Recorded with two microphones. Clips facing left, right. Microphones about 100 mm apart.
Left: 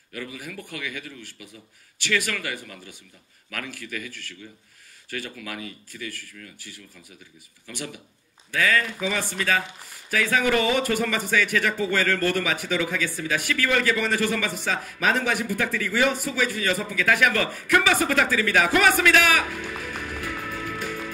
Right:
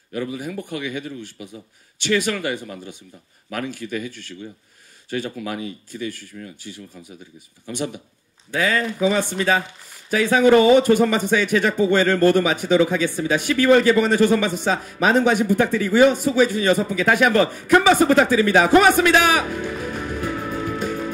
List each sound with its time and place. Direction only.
0.1 s speech: 25° right (ahead or behind)